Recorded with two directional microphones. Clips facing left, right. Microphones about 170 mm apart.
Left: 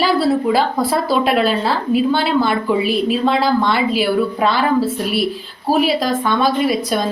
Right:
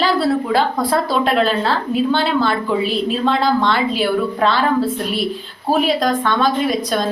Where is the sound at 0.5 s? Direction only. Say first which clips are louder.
Even; 5° left (ahead or behind).